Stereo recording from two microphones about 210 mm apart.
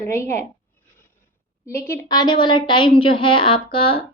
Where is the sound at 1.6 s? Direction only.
15° left (ahead or behind).